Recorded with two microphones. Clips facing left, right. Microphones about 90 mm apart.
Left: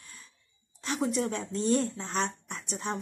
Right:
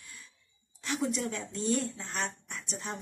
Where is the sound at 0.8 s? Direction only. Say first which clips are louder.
Left 3 dB; 35° left (ahead or behind).